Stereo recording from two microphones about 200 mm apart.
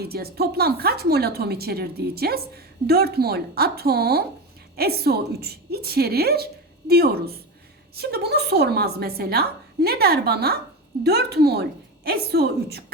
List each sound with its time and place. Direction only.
0.0 s a woman's voice: 50° right (ahead or behind)